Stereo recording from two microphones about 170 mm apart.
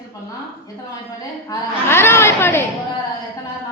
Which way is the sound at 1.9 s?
15° left (ahead or behind).